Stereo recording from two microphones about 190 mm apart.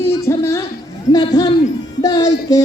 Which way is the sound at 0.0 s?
15° left (ahead or behind).